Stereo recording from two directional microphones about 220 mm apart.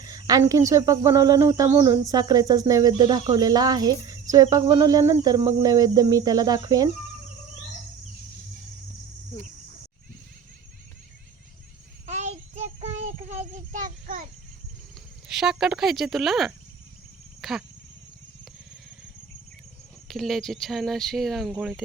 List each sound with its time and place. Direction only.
0.0 s speech: 15° right (ahead or behind)
12.0 s child singing: 30° right (ahead or behind)
15.3 s speech: centre (ahead or behind)
20.1 s speech: centre (ahead or behind)